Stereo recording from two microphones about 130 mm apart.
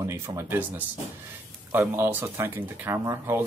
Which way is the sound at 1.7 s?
15° right (ahead or behind).